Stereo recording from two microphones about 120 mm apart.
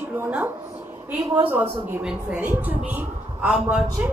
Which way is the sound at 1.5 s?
15° right (ahead or behind).